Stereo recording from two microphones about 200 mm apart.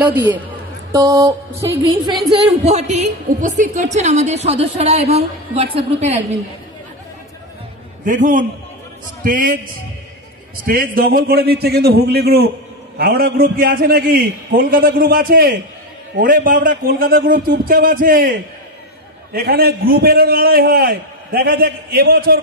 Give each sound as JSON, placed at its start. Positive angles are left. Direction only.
{"t": 0.9, "sound": "music", "side_deg": -20}
{"t": 1.6, "sound": "speech", "side_deg": -15}
{"t": 2.6, "sound": "a woman's voice", "side_deg": -35}
{"t": 8.0, "sound": "a woman's voice", "side_deg": -40}
{"t": 10.6, "sound": "a man's voice", "side_deg": -45}